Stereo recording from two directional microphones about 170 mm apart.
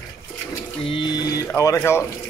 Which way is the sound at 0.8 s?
30° left (ahead or behind).